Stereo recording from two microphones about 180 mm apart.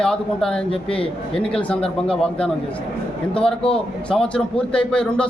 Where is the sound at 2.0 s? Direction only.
5° left (ahead or behind).